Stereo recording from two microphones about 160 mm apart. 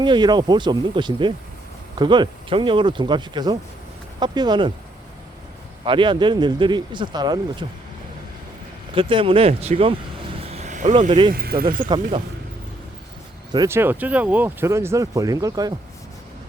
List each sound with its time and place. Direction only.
0.0 s speech: 30° right (ahead or behind)
5.8 s speech: 30° right (ahead or behind)
9.0 s speech: 35° right (ahead or behind)
10.5 s vehicle: 45° right (ahead or behind)
11.3 s speech: 70° right (ahead or behind)
13.7 s speech: 15° right (ahead or behind)